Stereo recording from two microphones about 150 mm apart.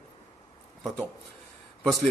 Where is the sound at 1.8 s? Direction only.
Centre (ahead or behind).